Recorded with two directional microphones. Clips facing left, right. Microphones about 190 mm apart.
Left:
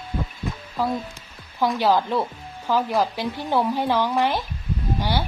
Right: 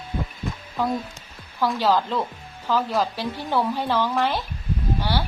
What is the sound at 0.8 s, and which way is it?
Speech, 5° left (ahead or behind).